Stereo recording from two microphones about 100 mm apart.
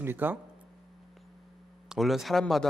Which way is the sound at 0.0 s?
20° right (ahead or behind).